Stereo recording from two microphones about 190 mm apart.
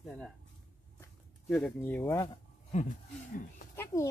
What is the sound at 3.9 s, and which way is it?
Speech, 20° left (ahead or behind).